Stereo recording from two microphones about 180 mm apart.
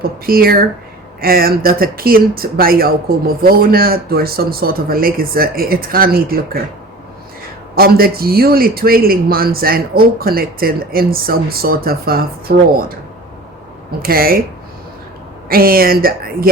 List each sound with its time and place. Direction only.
0.3 s speech: 55° right (ahead or behind)
7.8 s speech: 55° right (ahead or behind)
14.0 s speech: 55° right (ahead or behind)
15.4 s speech: 55° right (ahead or behind)